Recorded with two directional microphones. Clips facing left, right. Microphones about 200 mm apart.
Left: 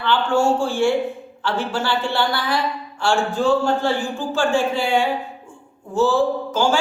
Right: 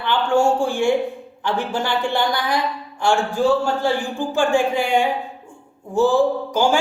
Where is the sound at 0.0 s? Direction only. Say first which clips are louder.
Right 1 dB; 15° right (ahead or behind).